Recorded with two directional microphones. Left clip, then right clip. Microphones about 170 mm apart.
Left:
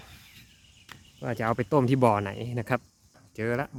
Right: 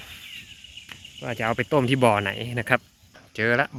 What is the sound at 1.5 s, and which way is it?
Speech, 10° left (ahead or behind).